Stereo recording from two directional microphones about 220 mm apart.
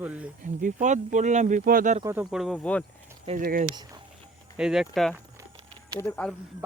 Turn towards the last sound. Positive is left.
turn(degrees=10)  # may be behind; listen again after turning